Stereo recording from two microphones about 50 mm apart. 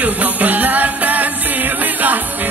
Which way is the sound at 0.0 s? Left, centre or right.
Right.